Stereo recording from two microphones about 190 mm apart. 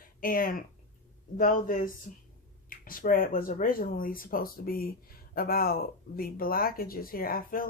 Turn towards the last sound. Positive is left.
turn(degrees=50)  # may be behind; listen again after turning